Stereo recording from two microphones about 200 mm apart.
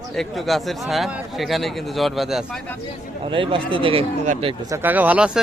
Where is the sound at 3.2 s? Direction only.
25° right (ahead or behind).